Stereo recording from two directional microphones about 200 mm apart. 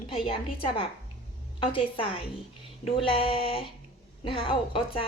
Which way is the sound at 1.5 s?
25° left (ahead or behind).